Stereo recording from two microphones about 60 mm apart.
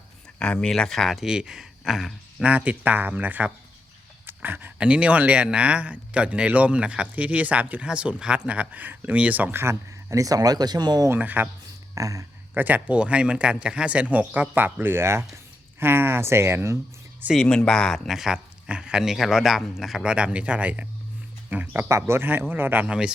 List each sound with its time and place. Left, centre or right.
0.3 s speech: centre
1.2 s speech: centre
2.4 s speech: right
4.3 s a sound: right
4.8 s speech: right
10.1 s speech: right
11.2 s speech: right
11.9 s speech: right
12.5 s speech: right
17.3 s speech: centre
20.1 s speech: centre
21.8 s speech: right
22.9 s speech: centre